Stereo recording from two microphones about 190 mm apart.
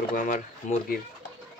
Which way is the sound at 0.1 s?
45° left (ahead or behind).